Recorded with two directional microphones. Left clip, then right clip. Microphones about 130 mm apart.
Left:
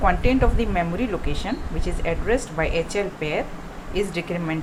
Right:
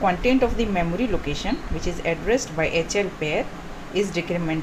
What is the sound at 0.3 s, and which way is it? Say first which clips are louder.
A woman's voice: right 1 dB; 5° right (ahead or behind).